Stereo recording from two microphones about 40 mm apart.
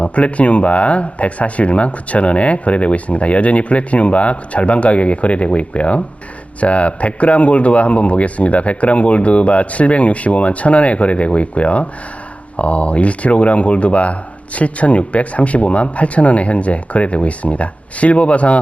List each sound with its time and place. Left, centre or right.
0.0 s speech: left